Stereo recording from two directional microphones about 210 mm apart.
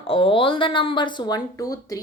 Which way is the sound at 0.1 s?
25° left (ahead or behind).